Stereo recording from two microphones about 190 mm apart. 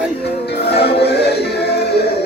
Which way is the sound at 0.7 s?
60° left (ahead or behind).